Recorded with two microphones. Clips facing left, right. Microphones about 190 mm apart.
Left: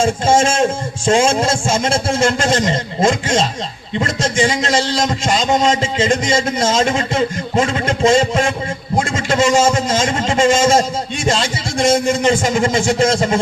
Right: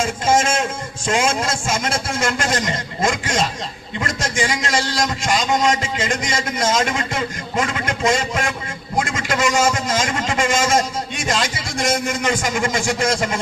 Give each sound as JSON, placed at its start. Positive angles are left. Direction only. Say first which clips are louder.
{"t": 0.0, "sound": "a man's voice", "louder": "left 4 dB", "side_deg": 30}